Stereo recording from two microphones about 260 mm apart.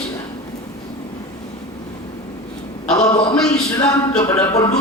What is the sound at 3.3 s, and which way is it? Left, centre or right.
A man's voice, centre.